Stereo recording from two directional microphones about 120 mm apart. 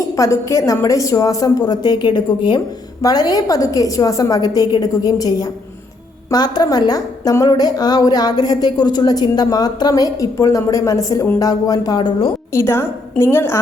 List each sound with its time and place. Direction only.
0.2 s a woman's voice: 25° left (ahead or behind)
12.5 s a woman's voice: 20° left (ahead or behind)